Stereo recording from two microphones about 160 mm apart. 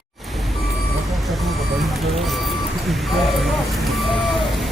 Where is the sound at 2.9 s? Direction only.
Centre (ahead or behind).